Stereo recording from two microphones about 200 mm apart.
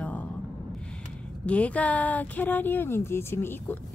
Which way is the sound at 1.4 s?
5° left (ahead or behind).